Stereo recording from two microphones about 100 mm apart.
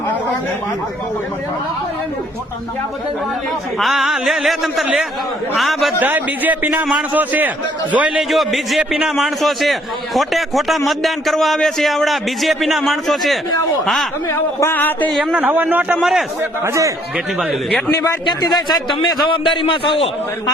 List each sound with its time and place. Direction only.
3.8 s a man's voice: centre (ahead or behind)
6.0 s a man's voice: 15° right (ahead or behind)
8.3 s a man's voice: centre (ahead or behind)
14.3 s speech: 25° left (ahead or behind)
15.1 s a man's voice: 10° right (ahead or behind)
16.0 s a man's voice: centre (ahead or behind)
16.4 s a man's voice: 30° right (ahead or behind)
17.9 s a man's voice: 30° left (ahead or behind)
18.3 s speech: 45° left (ahead or behind)
19.0 s a man's voice: 60° left (ahead or behind)